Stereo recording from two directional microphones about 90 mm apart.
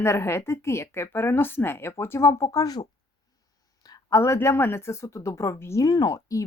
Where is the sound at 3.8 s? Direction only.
40° left (ahead or behind).